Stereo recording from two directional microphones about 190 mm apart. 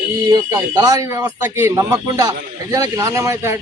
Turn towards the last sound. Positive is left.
turn(degrees=-15)  # may be behind; listen again after turning